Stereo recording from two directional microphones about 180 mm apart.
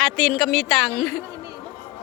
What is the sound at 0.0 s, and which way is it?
A woman's voice, centre (ahead or behind).